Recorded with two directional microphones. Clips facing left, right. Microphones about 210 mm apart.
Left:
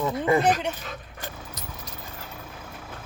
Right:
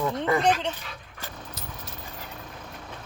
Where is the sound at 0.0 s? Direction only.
5° left (ahead or behind).